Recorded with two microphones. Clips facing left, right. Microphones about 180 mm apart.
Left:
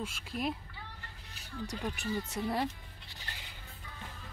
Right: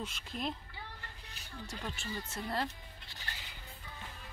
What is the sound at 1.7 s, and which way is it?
Speech, 15° left (ahead or behind).